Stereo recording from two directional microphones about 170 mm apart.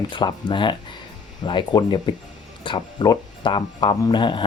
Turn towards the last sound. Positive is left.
turn(degrees=30)  # may be behind; listen again after turning